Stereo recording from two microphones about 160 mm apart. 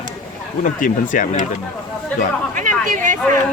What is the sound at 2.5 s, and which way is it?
Speech, 55° right (ahead or behind).